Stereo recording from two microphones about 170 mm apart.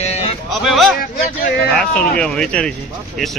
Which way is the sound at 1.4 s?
65° left (ahead or behind).